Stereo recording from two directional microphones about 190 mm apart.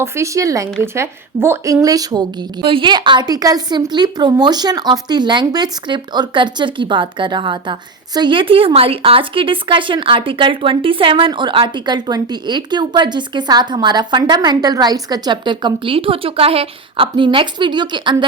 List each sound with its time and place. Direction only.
0.0 s a woman's voice: 15° right (ahead or behind)